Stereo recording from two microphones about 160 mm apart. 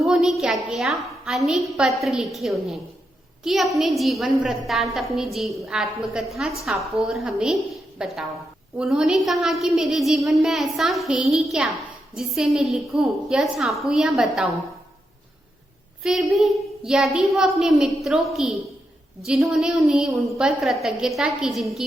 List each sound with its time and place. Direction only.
0.0 s a woman's voice: centre (ahead or behind)
16.0 s a woman's voice: centre (ahead or behind)